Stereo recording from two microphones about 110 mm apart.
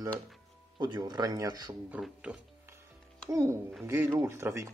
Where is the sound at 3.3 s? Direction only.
25° right (ahead or behind).